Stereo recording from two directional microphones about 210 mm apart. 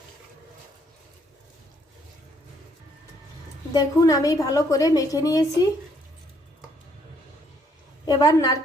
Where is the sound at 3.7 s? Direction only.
15° left (ahead or behind).